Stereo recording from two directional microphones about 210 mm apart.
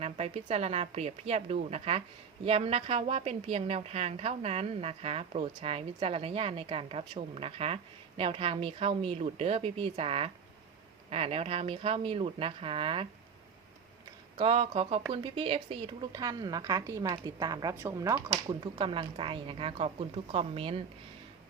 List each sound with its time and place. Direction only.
0.0 s a woman's voice: 30° right (ahead or behind)
14.3 s a woman's voice: 30° right (ahead or behind)